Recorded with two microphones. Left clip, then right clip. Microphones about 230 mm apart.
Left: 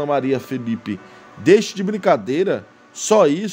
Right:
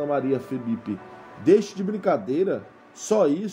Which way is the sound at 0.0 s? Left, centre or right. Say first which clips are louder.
Left 5 dB; left.